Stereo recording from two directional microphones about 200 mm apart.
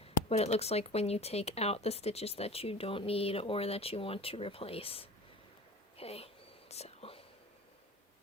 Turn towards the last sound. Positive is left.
turn(degrees=30)  # may be behind; listen again after turning